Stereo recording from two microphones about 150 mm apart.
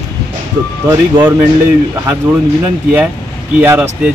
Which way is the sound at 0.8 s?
15° right (ahead or behind).